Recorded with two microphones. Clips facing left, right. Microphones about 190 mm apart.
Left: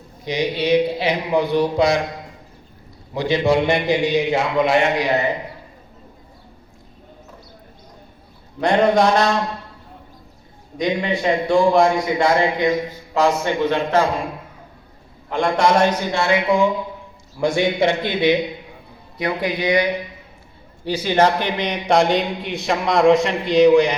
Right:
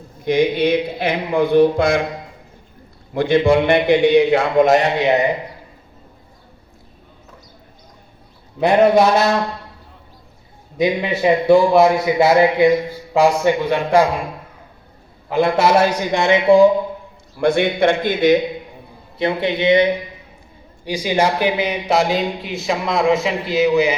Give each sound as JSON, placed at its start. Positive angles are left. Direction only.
{"t": 0.3, "sound": "speech", "side_deg": -50}
{"t": 3.2, "sound": "a man's voice", "side_deg": -55}
{"t": 4.9, "sound": "a man's voice", "side_deg": -25}
{"t": 8.6, "sound": "a man's voice", "side_deg": -5}
{"t": 10.8, "sound": "a man's voice", "side_deg": -5}
{"t": 15.3, "sound": "a man's voice", "side_deg": -5}
{"t": 17.4, "sound": "a man's voice", "side_deg": -60}
{"t": 18.0, "sound": "speech", "side_deg": -45}
{"t": 19.1, "sound": "a man's voice", "side_deg": -25}
{"t": 20.8, "sound": "a man's voice", "side_deg": -10}